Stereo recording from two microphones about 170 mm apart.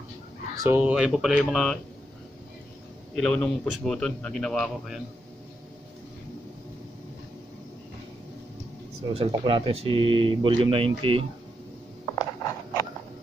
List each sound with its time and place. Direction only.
0.6 s speech: 10° right (ahead or behind)
3.2 s speech: centre (ahead or behind)
9.1 s speech: 30° right (ahead or behind)
12.2 s a sound: 20° left (ahead or behind)